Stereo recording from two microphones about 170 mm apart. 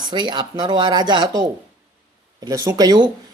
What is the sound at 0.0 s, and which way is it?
Speech, 25° right (ahead or behind).